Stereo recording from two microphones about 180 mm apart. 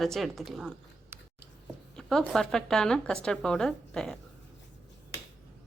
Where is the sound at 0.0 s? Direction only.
Centre (ahead or behind).